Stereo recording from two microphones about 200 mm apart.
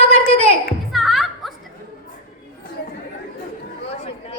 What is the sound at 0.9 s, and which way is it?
Music, centre (ahead or behind).